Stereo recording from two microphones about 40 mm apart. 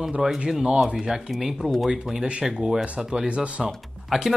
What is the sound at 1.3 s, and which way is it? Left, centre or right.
Speech, centre.